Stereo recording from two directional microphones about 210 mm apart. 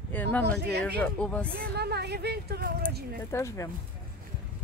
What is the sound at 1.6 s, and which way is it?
Speech, 50° right (ahead or behind).